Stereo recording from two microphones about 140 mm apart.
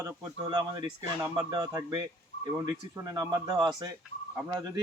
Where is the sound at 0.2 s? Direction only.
35° right (ahead or behind).